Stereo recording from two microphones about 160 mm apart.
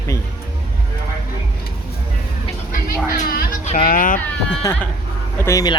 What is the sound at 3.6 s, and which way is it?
Speech, 60° left (ahead or behind).